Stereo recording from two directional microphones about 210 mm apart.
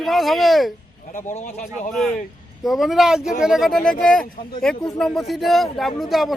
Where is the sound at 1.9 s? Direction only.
Centre (ahead or behind).